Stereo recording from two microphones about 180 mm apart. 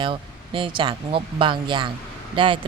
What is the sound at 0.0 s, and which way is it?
Speech, 30° right (ahead or behind).